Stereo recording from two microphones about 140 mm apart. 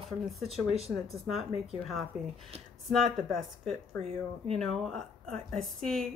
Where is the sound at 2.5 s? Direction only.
50° right (ahead or behind).